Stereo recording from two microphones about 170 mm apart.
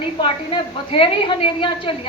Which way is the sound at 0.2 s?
30° left (ahead or behind).